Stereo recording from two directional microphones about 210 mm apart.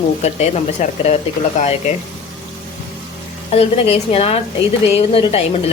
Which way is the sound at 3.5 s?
30° left (ahead or behind).